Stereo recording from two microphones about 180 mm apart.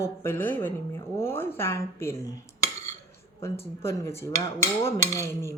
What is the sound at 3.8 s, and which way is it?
Speech, 15° left (ahead or behind).